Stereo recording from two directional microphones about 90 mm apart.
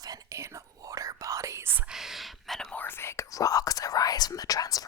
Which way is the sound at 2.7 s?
25° left (ahead or behind).